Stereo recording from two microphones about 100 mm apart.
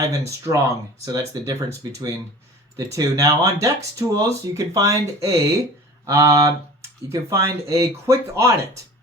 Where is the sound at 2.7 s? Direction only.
35° right (ahead or behind).